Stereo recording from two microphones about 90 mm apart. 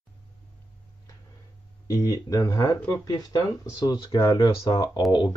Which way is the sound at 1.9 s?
40° left (ahead or behind).